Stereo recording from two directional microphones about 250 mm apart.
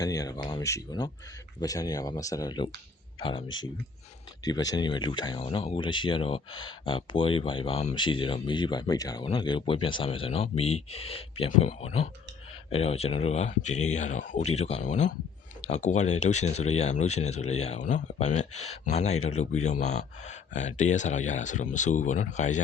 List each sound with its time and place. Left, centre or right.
0.0 s speech: centre; by 22.6 s left